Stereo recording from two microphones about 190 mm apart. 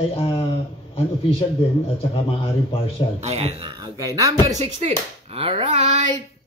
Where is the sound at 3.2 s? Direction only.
35° right (ahead or behind); by 4.6 s 15° right (ahead or behind).